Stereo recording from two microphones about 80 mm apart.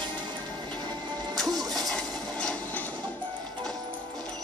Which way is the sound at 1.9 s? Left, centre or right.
Centre.